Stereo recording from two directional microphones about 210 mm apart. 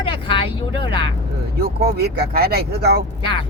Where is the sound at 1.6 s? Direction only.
50° right (ahead or behind).